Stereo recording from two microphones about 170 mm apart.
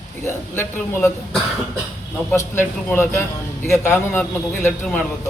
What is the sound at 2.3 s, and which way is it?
A man's voice, 15° left (ahead or behind).